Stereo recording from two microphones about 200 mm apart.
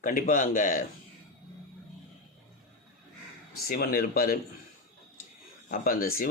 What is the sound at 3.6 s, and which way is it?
Speech, 45° left (ahead or behind).